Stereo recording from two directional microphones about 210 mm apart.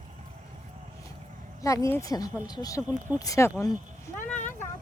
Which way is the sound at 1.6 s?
15° left (ahead or behind).